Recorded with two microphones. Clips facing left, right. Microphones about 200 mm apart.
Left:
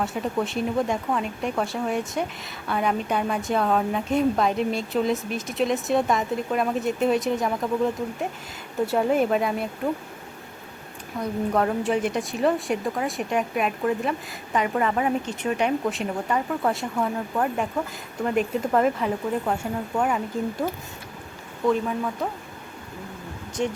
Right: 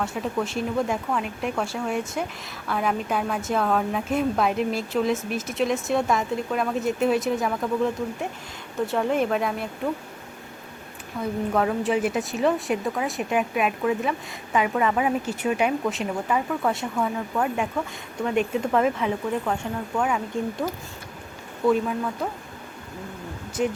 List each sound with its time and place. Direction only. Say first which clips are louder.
0.0 s a woman's voice: left 1 dB; centre (ahead or behind)
8.9 s a woman's voice: left 2 dB; 5° left (ahead or behind)
11.2 s a woman's voice: even; centre (ahead or behind)
21.7 s a woman's voice: right 1 dB; centre (ahead or behind)
23.6 s speech: right 1 dB; 30° left (ahead or behind)